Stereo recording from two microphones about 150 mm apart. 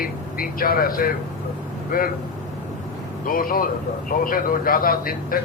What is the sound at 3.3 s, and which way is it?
A man's voice, 70° left (ahead or behind).